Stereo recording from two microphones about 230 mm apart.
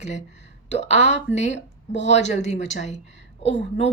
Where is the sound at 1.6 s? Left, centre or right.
Left.